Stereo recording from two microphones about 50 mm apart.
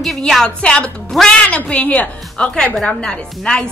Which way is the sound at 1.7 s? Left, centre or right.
Left.